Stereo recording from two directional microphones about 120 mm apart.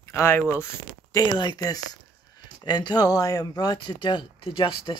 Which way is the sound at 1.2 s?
40° left (ahead or behind).